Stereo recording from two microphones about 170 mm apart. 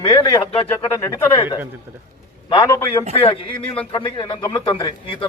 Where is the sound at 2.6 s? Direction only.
20° left (ahead or behind).